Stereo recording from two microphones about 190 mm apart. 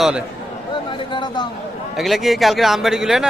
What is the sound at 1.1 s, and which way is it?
Speech, 25° left (ahead or behind).